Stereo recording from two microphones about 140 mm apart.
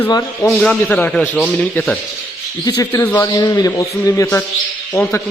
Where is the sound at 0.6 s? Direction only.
10° left (ahead or behind).